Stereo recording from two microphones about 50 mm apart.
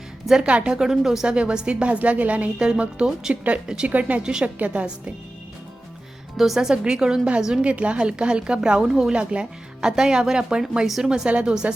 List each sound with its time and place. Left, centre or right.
0.4 s a woman's voice: right
0.7 s speech: centre
1.3 s a woman's voice: centre
4.2 s speech: centre
4.4 s a woman's voice: right
6.3 s speech: centre
7.6 s a woman's voice: right; by 9.1 s centre
9.1 s a woman's voice: right
9.9 s speech: centre
10.8 s speech: centre
11.1 s a woman's voice: right